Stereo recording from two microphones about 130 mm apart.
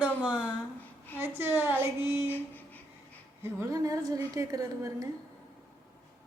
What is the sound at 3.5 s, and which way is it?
A woman's voice, 25° right (ahead or behind).